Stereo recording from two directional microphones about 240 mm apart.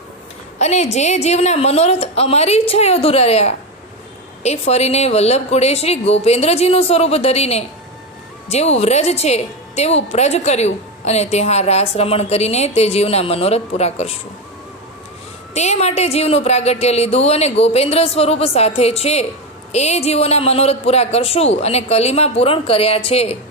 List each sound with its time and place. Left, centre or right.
0.6 s a woman's voice: left
15.5 s a woman's voice: left